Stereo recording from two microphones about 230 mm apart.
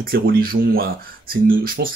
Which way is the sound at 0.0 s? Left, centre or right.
Right.